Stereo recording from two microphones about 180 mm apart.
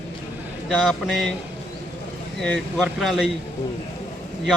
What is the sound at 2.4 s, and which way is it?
Speech, centre (ahead or behind).